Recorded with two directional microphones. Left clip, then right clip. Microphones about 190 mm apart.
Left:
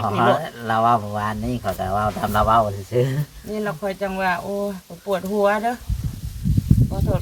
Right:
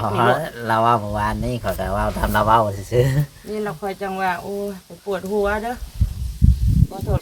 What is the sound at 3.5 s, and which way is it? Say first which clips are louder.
Speech: left 1 dB; 5° left (ahead or behind).